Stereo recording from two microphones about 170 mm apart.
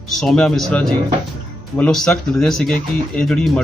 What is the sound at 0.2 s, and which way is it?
Speech, centre (ahead or behind).